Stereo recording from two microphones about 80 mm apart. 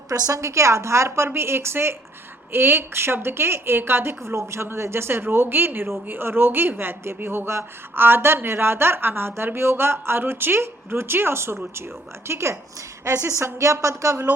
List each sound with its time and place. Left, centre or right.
0.3 s a woman's voice: right